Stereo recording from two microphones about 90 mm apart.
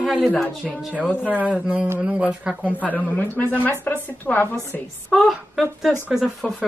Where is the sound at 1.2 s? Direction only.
15° right (ahead or behind).